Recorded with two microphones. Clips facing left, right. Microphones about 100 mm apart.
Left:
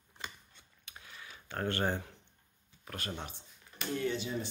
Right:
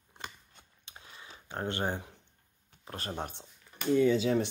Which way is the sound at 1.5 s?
20° right (ahead or behind).